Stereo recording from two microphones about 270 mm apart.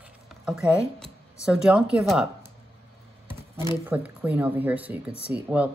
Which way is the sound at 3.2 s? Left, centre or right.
Centre.